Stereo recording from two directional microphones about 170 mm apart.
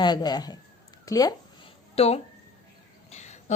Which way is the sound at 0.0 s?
25° left (ahead or behind).